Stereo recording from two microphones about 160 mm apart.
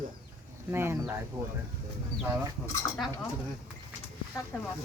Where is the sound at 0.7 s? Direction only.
15° right (ahead or behind).